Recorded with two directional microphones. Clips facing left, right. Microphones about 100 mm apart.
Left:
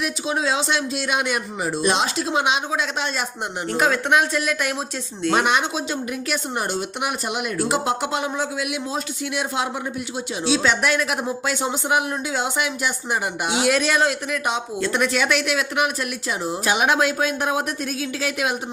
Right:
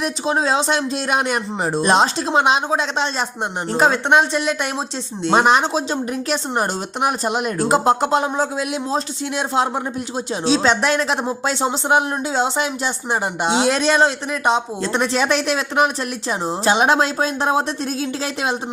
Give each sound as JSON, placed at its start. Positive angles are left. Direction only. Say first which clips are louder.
{"t": 0.0, "sound": "speech", "louder": "right 4 dB", "side_deg": -35}